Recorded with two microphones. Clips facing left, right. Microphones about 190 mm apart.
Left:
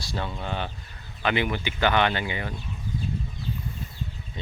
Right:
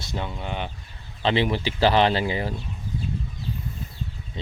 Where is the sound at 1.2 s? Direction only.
30° right (ahead or behind).